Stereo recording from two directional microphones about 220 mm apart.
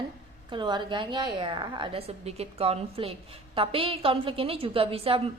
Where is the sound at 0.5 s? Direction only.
20° right (ahead or behind).